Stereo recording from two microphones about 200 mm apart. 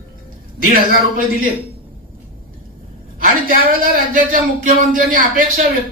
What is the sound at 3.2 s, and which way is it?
A man's voice, 45° right (ahead or behind).